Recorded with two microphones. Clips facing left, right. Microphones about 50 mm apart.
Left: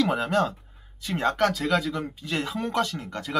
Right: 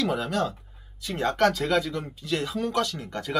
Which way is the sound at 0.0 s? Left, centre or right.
Left.